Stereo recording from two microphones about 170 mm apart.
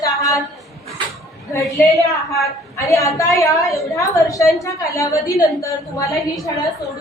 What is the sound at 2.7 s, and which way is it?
A woman's voice, 20° left (ahead or behind).